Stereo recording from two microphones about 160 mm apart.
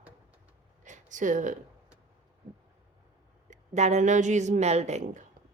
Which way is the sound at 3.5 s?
45° right (ahead or behind).